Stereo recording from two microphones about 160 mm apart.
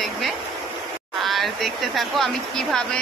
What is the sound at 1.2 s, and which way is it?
Speech, centre (ahead or behind).